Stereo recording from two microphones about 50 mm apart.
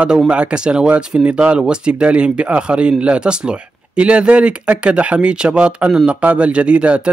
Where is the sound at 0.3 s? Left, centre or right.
Right.